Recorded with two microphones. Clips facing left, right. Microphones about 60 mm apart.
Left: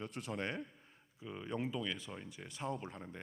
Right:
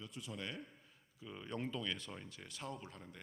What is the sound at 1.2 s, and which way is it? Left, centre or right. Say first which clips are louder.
Speech: left 3 dB; centre.